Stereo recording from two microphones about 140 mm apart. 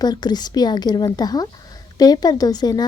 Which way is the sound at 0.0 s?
30° left (ahead or behind).